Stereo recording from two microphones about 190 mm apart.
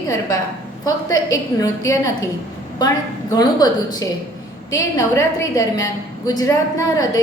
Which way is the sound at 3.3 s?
20° left (ahead or behind).